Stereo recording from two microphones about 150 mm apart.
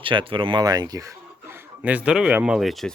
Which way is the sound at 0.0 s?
35° right (ahead or behind).